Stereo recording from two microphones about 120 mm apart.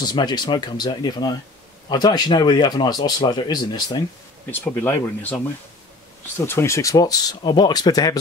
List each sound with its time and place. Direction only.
0.0 s speech: 35° left (ahead or behind)
4.5 s speech: 15° left (ahead or behind)
6.3 s speech: 20° left (ahead or behind)